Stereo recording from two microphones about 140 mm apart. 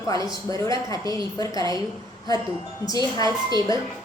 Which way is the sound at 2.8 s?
25° left (ahead or behind).